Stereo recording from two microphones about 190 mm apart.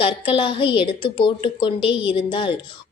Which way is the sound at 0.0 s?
25° left (ahead or behind).